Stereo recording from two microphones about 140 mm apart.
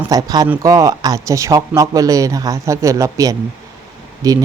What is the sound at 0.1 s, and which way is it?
Speech, 25° right (ahead or behind).